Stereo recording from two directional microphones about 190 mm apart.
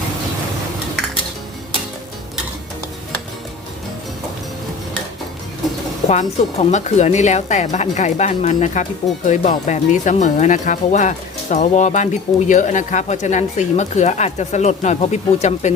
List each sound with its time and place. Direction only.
6.1 s speech: 35° left (ahead or behind)